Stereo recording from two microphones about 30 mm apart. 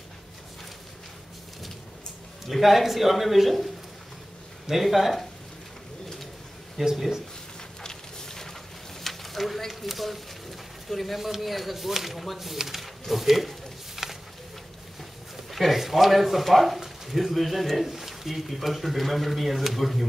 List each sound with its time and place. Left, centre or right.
2.4 s speech: centre
4.6 s speech: centre
6.8 s speech: centre
7.8 s a sound: centre
9.0 s a sound: centre
9.7 s speech: centre
11.1 s speech: centre
14.0 s a sound: centre
15.5 s speech: centre